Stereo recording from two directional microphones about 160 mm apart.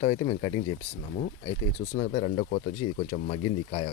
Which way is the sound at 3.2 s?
40° left (ahead or behind).